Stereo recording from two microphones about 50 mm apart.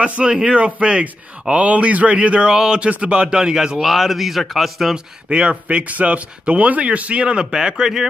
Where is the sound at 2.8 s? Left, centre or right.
Right.